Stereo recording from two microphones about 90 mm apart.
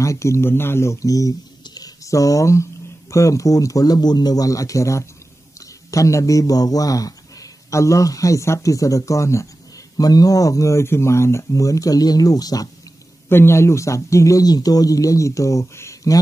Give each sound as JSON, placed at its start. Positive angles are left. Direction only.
{"t": 0.0, "sound": "speech", "side_deg": 35}
{"t": 9.9, "sound": "speech", "side_deg": 45}
{"t": 13.3, "sound": "speech", "side_deg": 25}